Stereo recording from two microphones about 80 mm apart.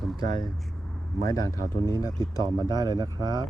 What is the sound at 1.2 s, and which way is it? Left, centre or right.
Speech, left.